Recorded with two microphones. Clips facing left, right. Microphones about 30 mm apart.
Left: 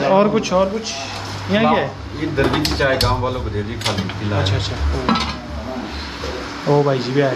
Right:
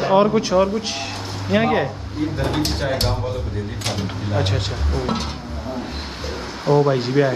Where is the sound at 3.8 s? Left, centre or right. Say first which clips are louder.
Left 3 dB; left.